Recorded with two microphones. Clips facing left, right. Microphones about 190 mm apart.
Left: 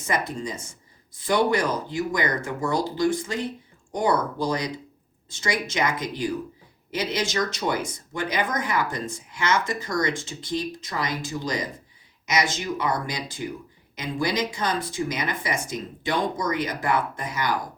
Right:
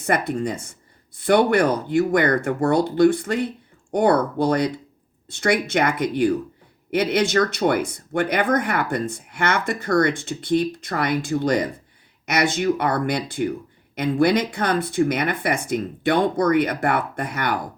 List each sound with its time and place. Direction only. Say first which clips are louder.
0.0 s speech: right 6 dB; 60° right (ahead or behind)